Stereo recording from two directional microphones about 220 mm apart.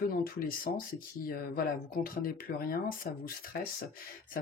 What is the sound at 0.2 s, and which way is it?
Speech, 40° left (ahead or behind).